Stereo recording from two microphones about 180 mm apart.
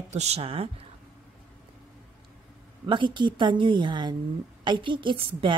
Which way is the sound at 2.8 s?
25° right (ahead or behind).